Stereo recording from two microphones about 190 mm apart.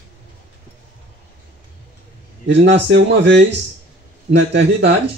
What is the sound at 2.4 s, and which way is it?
Speech, 65° right (ahead or behind).